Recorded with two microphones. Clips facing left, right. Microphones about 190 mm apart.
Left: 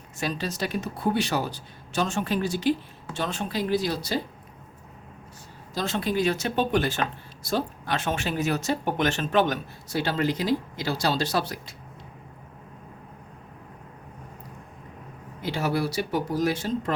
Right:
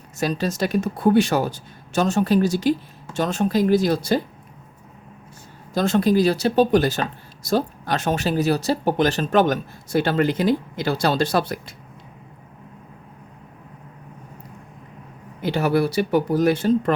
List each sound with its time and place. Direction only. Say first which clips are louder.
0.2 s speech: right 6 dB; 45° right (ahead or behind)
5.7 s speech: right 8 dB; 50° right (ahead or behind)
15.4 s speech: right 7 dB; 60° right (ahead or behind)